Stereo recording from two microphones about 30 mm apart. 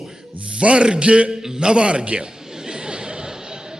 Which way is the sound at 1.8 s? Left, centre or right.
Right.